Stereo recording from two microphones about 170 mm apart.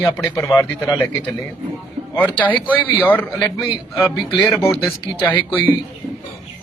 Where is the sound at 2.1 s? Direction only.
10° left (ahead or behind).